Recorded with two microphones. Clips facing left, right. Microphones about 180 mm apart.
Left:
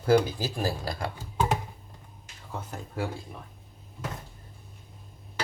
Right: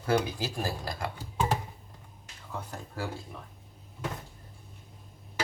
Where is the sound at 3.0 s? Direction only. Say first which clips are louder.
Left 4 dB; 20° left (ahead or behind).